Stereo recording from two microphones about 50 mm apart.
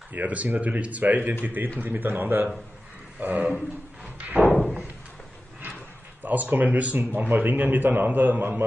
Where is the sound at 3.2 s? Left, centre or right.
Right.